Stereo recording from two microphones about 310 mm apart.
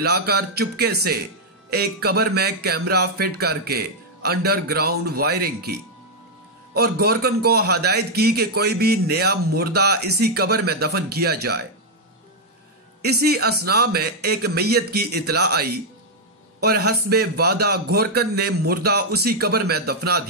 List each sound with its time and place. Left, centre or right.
0.0 s speech: right
13.0 s speech: right